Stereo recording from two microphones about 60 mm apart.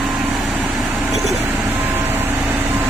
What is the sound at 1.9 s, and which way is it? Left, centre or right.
Vehicle, right.